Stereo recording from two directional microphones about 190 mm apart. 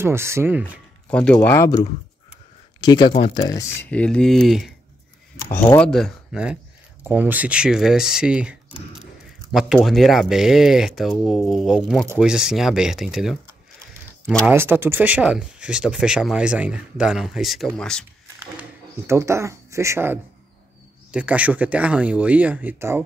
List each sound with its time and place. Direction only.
0.0 s speech: 15° right (ahead or behind)
1.0 s speech: 5° left (ahead or behind)
5.5 s speech: 10° left (ahead or behind)
14.4 s speech: 10° right (ahead or behind); by 18.0 s 5° left (ahead or behind)
18.6 s speech: 15° right (ahead or behind)